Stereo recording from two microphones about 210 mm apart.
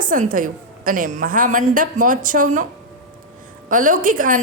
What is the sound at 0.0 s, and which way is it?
Speech, 40° right (ahead or behind).